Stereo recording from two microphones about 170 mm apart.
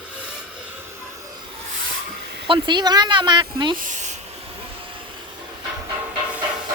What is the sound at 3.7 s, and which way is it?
Speech, 50° right (ahead or behind).